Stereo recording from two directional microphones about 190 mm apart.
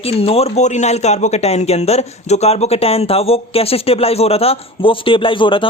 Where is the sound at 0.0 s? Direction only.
30° left (ahead or behind).